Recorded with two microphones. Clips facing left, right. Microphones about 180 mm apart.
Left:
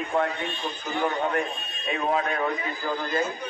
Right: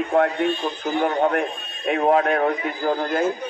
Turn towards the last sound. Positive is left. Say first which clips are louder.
# right 6 dB
turn(degrees=-50)  # may be behind; listen again after turning